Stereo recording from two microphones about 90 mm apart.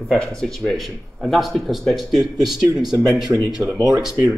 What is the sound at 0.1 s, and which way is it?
Speech, 5° left (ahead or behind).